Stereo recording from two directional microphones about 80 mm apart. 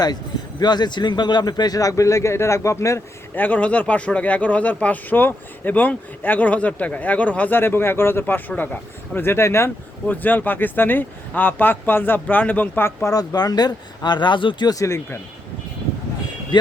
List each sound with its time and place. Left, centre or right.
0.6 s speech: left
3.3 s speech: left
10.1 s speech: left
13.1 s speech: left
14.7 s speech: left